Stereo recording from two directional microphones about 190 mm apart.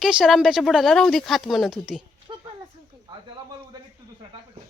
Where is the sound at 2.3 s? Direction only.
25° right (ahead or behind).